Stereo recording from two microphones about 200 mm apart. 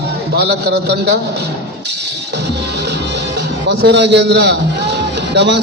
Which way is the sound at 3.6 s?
60° right (ahead or behind).